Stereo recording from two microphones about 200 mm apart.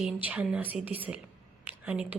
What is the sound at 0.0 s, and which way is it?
A woman's voice, 5° right (ahead or behind).